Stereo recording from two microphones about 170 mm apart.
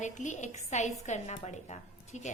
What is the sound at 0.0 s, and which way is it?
A woman's voice, 45° left (ahead or behind).